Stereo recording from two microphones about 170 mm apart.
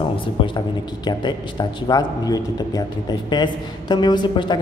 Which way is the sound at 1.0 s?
25° left (ahead or behind).